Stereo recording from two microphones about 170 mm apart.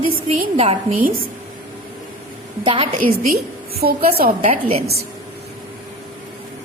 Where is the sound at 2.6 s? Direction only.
35° right (ahead or behind).